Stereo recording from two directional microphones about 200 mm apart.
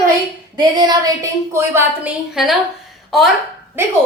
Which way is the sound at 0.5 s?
20° right (ahead or behind).